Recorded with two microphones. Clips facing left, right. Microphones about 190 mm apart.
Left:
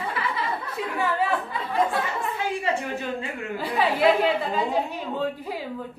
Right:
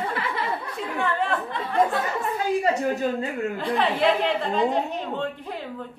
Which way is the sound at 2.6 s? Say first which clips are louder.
Right 4 dB; 40° right (ahead or behind).